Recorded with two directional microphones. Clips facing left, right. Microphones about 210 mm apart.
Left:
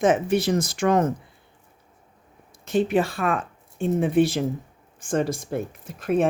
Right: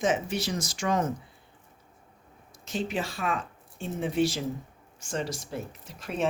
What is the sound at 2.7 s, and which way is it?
Speech, 55° left (ahead or behind).